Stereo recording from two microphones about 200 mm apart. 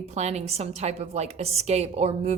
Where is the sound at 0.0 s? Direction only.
35° right (ahead or behind).